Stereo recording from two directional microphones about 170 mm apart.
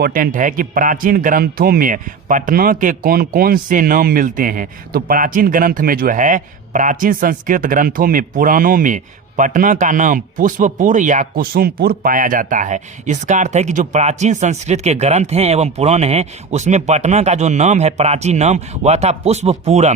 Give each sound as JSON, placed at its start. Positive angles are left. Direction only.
{"t": 0.0, "sound": "speech", "side_deg": -55}